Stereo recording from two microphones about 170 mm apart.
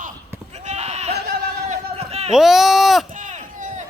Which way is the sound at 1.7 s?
35° right (ahead or behind).